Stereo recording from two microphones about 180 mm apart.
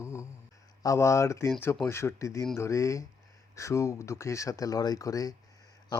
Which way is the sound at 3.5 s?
15° left (ahead or behind).